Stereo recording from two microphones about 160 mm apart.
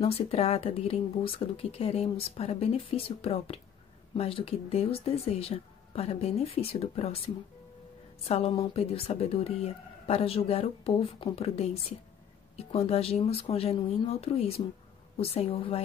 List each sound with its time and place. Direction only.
0.0 s speech: 40° left (ahead or behind)
8.3 s speech: 40° left (ahead or behind)